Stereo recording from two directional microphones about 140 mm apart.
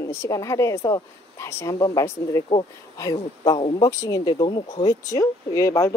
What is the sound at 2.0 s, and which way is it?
Speech, 20° left (ahead or behind).